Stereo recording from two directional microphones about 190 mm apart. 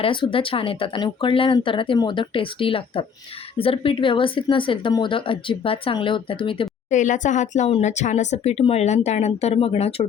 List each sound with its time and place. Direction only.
0.0 s speech: 25° left (ahead or behind)
6.9 s speech: 40° left (ahead or behind)